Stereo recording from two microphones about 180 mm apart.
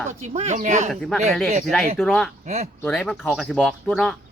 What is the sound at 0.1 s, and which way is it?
Speech, 40° right (ahead or behind).